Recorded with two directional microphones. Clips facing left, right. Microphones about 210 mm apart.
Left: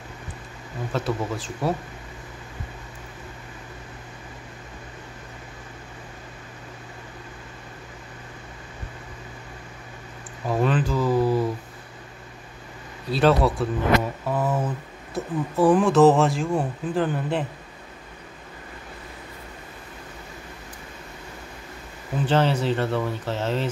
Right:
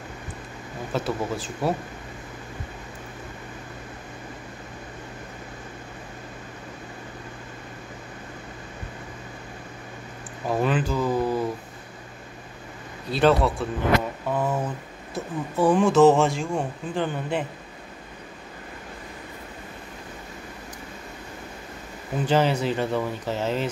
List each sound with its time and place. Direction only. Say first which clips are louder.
0.9 s speech: even; centre (ahead or behind)
10.5 s a sound: left 1 dB; centre (ahead or behind)
13.1 s speech: left 1 dB; centre (ahead or behind)
22.2 s speech: even; 10° right (ahead or behind)